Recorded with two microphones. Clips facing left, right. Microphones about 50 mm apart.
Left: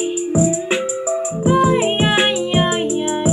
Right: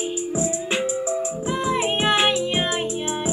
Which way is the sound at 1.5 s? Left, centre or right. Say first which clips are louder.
Left 8 dB; centre.